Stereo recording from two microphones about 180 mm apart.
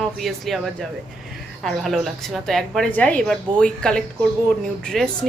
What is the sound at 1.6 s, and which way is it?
Speech, centre (ahead or behind).